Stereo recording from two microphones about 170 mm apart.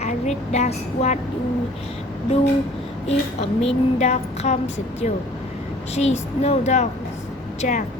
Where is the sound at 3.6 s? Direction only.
40° left (ahead or behind).